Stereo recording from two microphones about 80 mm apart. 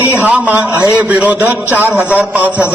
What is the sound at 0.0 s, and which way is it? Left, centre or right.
A man's voice, centre.